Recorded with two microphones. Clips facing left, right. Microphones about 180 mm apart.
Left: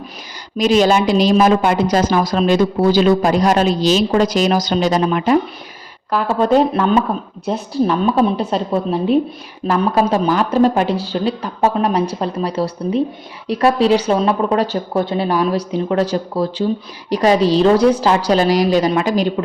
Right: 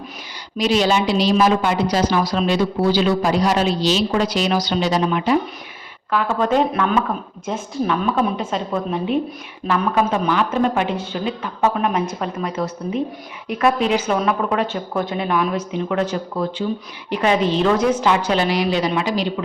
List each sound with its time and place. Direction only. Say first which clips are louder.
0.5 s a woman's voice: left 4 dB; 45° left (ahead or behind)
6.1 s speech: left 4 dB; 35° left (ahead or behind)